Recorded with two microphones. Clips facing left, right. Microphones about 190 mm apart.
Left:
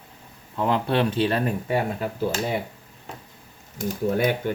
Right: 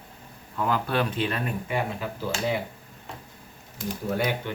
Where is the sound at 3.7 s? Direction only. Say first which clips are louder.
Left 5 dB; 50° left (ahead or behind).